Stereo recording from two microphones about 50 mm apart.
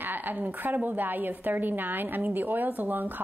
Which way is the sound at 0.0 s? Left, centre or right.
Right.